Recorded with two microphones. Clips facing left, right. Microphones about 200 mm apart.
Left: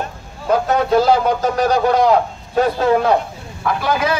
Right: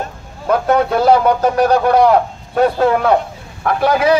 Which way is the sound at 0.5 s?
60° right (ahead or behind).